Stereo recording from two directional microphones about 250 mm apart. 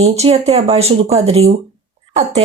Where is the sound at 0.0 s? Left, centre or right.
Right.